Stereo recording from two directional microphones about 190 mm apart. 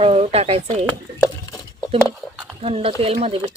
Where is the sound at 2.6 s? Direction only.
30° right (ahead or behind).